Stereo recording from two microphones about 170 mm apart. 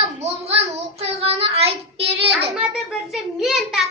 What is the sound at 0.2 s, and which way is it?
Child singing, 35° right (ahead or behind).